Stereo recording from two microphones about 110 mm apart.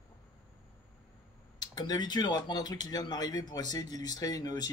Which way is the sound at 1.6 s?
40° left (ahead or behind).